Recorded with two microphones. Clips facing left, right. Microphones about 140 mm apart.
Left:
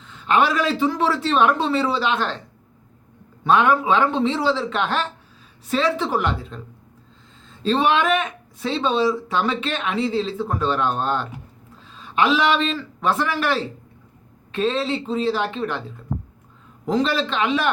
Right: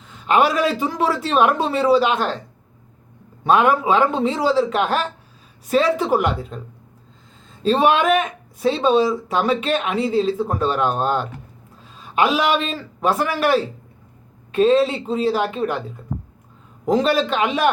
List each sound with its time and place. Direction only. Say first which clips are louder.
0.3 s speech: right 2 dB; 10° right (ahead or behind)
3.5 s speech: right 1 dB; 10° right (ahead or behind)
4.1 s speech: even; 40° right (ahead or behind)
4.4 s speech: right 4 dB; 10° right (ahead or behind)
7.8 s speech: right 3 dB; 45° right (ahead or behind)
8.8 s speech: right 2 dB; 10° right (ahead or behind)
17.2 s speech: right 3 dB; 10° right (ahead or behind)